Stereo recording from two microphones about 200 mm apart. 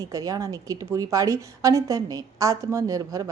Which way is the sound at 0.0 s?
15° right (ahead or behind).